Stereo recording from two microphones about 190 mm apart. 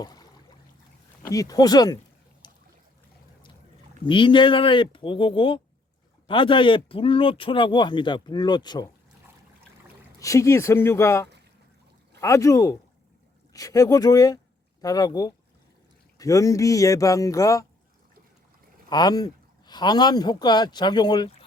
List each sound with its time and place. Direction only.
0.0 s a sound: 20° left (ahead or behind)
1.2 s speech: 20° left (ahead or behind)
2.4 s boat: 25° left (ahead or behind)
4.0 s speech: 25° left (ahead or behind)
10.2 s speech: 15° left (ahead or behind)
18.9 s speech: 20° left (ahead or behind)